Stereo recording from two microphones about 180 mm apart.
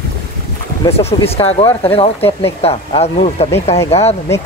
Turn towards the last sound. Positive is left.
turn(degrees=35)  # may be behind; listen again after turning